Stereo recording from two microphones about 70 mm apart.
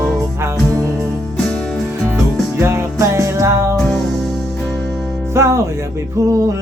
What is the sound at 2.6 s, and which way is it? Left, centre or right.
Music, right.